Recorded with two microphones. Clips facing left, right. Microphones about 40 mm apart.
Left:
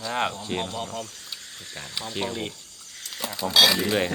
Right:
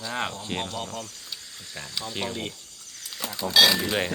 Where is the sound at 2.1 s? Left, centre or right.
Centre.